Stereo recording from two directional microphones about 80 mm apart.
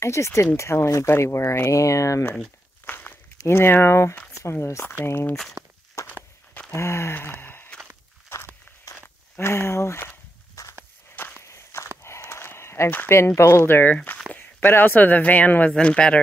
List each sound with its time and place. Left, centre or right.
0.0 s speech: left
2.8 s walk: left
3.4 s speech: left
5.6 s walk: centre
6.0 s walk: left
6.7 s speech: left
8.3 s walk: left
8.9 s a sound: left
9.4 s speech: left
11.4 s walk: left
12.0 s a sound: left
13.0 s speech: left; by 16.2 s centre